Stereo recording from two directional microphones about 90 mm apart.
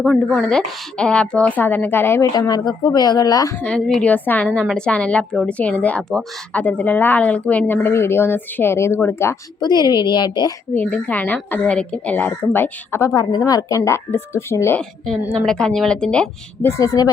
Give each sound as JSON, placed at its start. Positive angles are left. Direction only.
{"t": 0.0, "sound": "a woman's voice", "side_deg": 10}
{"t": 2.5, "sound": "speech", "side_deg": 50}
{"t": 3.6, "sound": "a woman's voice", "side_deg": 10}
{"t": 4.0, "sound": "a woman's voice", "side_deg": 15}
{"t": 9.6, "sound": "a woman's voice", "side_deg": 55}
{"t": 10.8, "sound": "speech", "side_deg": 15}
{"t": 13.1, "sound": "speech", "side_deg": 45}
{"t": 15.4, "sound": "a woman's voice", "side_deg": 5}
{"t": 16.6, "sound": "speech", "side_deg": 40}